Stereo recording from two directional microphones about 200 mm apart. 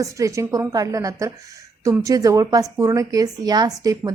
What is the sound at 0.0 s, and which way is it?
A woman's voice, 15° right (ahead or behind).